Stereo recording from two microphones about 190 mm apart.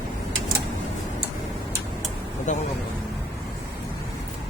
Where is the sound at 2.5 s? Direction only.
40° left (ahead or behind).